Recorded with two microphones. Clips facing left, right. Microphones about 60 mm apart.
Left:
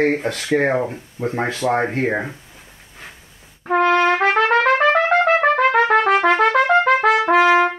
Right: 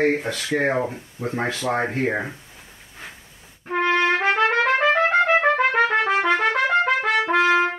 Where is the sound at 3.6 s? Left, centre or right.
Left.